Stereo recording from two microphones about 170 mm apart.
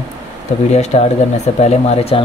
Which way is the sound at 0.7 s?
40° left (ahead or behind).